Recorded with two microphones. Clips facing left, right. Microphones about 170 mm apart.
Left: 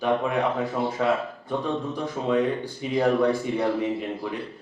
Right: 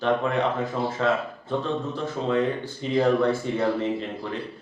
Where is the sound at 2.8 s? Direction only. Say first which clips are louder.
Right 1 dB; 10° left (ahead or behind).